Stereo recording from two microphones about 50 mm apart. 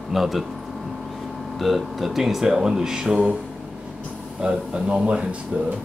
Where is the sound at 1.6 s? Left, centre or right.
Centre.